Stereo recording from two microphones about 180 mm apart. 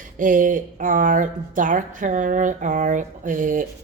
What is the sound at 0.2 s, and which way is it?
Speech, 50° right (ahead or behind).